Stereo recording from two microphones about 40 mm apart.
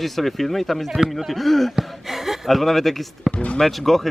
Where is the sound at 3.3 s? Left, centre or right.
Left.